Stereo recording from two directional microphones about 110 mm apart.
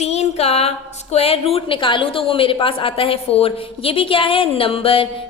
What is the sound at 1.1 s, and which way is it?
A woman's voice, 65° left (ahead or behind).